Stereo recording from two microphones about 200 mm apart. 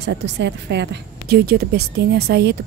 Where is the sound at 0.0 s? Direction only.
60° right (ahead or behind).